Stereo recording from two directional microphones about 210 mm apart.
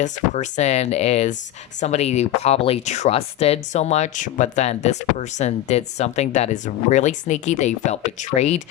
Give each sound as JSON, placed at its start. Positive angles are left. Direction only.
{"t": 0.0, "sound": "speech", "side_deg": 35}